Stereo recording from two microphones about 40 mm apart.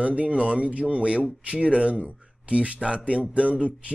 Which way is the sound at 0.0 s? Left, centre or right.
Right.